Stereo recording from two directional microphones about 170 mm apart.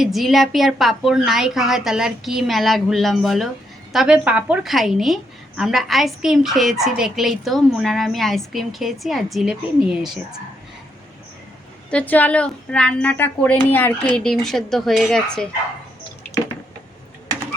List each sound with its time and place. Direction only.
0.0 s a woman's voice: centre (ahead or behind)
11.9 s a woman's voice: 10° left (ahead or behind)